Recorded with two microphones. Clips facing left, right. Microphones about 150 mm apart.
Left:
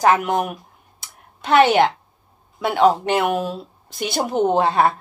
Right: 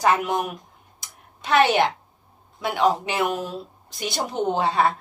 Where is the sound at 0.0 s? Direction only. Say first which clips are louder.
Left 4 dB; 55° left (ahead or behind).